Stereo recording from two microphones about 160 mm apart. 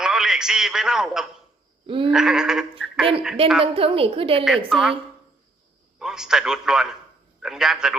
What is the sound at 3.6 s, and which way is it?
Speech, 35° right (ahead or behind).